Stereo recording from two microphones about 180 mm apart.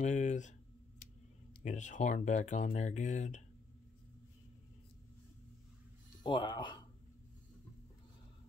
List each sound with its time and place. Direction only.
0.0 s computer keyboard: 40° left (ahead or behind)
1.6 s speech: 45° left (ahead or behind)
6.2 s speech: 25° left (ahead or behind)